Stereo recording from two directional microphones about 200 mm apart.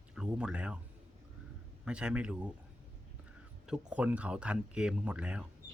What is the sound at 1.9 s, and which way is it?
Speech, 5° right (ahead or behind).